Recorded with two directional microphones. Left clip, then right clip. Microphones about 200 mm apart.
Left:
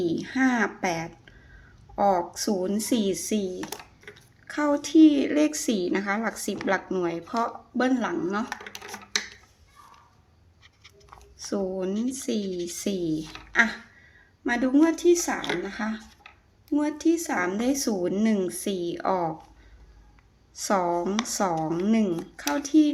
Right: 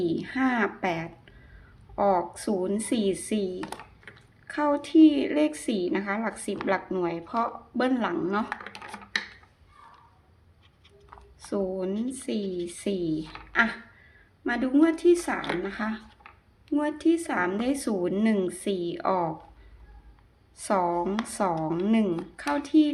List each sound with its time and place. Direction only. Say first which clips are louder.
0.0 s speech: left 2 dB; 10° left (ahead or behind)
3.6 s typing: left 1 dB; 25° right (ahead or behind)
4.4 s speech: left 1 dB; 10° left (ahead or behind)
11.3 s speech: even; 10° left (ahead or behind)
11.9 s speech: left 2 dB; 5° right (ahead or behind)
12.7 s speech: left 1 dB; 10° left (ahead or behind)
20.6 s speech: left 1 dB; 10° left (ahead or behind)